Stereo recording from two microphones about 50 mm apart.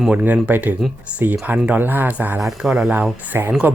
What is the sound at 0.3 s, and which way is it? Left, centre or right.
Speech, right.